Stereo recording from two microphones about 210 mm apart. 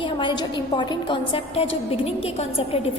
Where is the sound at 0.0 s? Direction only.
20° left (ahead or behind).